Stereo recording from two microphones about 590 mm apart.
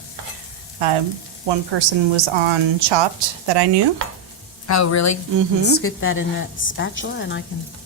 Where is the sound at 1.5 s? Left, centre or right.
Right.